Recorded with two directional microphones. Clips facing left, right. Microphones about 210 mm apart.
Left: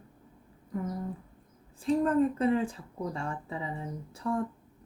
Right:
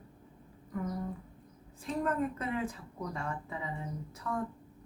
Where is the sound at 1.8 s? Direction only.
30° left (ahead or behind).